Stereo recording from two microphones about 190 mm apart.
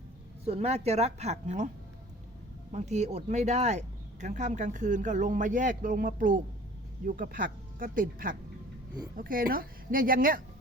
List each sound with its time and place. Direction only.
0.4 s speech: 35° right (ahead or behind)
2.7 s speech: 35° right (ahead or behind)